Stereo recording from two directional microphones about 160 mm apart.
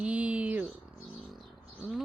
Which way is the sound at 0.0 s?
10° right (ahead or behind).